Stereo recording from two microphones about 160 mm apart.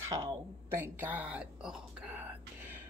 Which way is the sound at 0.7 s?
10° right (ahead or behind).